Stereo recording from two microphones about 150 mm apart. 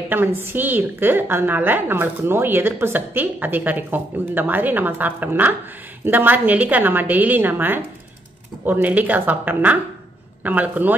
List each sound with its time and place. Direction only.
0.4 s a woman's voice: 15° right (ahead or behind)